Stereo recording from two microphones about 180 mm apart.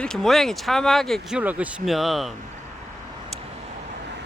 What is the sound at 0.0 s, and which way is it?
Speech, 5° left (ahead or behind).